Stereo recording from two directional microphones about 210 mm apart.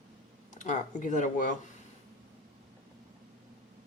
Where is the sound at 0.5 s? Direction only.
35° left (ahead or behind).